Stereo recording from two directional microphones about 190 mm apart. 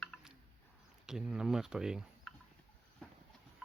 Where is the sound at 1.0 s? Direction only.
5° right (ahead or behind).